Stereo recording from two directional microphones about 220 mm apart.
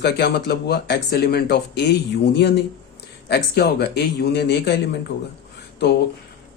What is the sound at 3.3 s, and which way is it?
Speech, 45° left (ahead or behind).